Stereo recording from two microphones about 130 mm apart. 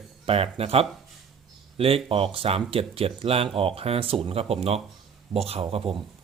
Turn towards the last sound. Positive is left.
turn(degrees=-50)  # may be behind; listen again after turning